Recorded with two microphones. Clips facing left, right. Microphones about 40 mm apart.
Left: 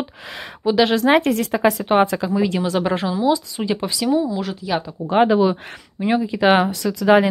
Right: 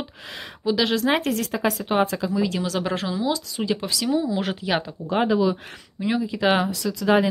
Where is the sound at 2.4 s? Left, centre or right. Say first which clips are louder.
Left 6 dB; left.